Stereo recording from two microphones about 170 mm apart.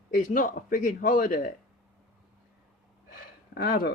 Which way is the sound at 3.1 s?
60° left (ahead or behind).